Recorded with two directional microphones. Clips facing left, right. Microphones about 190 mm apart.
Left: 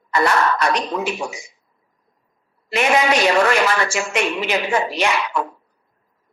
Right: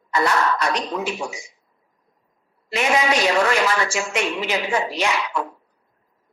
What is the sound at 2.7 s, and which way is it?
A man's voice, 60° left (ahead or behind).